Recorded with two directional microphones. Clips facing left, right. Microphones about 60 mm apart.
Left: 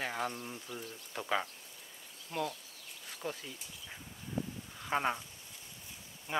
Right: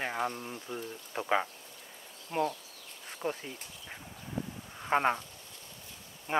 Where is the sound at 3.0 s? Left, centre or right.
Right.